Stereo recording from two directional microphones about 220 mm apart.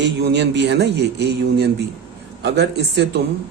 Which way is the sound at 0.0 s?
55° right (ahead or behind).